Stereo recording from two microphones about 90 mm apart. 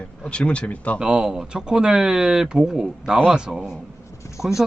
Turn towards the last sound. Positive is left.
turn(degrees=-5)  # may be behind; listen again after turning